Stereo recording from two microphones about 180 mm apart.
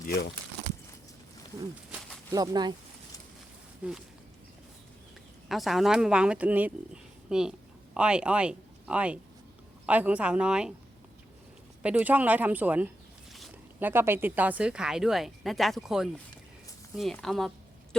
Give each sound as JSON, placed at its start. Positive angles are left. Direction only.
{"t": 0.0, "sound": "speech", "side_deg": 50}
{"t": 2.3, "sound": "speech", "side_deg": -20}
{"t": 3.8, "sound": "speech", "side_deg": -10}
{"t": 5.5, "sound": "speech", "side_deg": 0}
{"t": 11.8, "sound": "speech", "side_deg": -10}